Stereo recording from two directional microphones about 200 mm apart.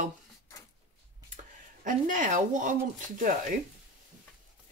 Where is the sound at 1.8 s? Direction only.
40° right (ahead or behind).